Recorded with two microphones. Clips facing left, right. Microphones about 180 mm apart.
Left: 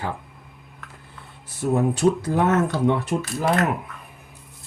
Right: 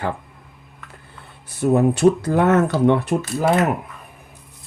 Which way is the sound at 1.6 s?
65° right (ahead or behind).